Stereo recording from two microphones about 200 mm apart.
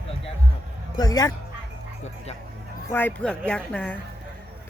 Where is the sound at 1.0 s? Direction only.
20° left (ahead or behind).